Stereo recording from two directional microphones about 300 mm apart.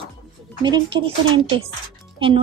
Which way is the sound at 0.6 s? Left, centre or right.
Centre.